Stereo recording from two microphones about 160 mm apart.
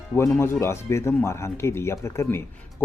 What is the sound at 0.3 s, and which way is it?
Speech, 15° left (ahead or behind).